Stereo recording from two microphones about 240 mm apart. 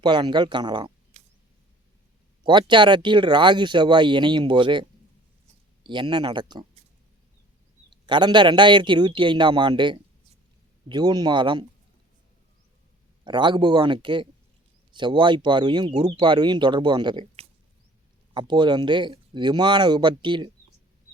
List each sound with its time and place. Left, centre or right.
0.0 s speech: centre
2.4 s speech: centre
7.9 s speech: centre
13.2 s speech: centre